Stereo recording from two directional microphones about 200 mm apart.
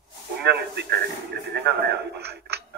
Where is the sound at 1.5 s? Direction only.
55° right (ahead or behind).